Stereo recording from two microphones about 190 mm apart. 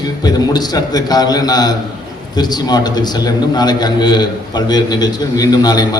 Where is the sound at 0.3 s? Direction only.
20° left (ahead or behind).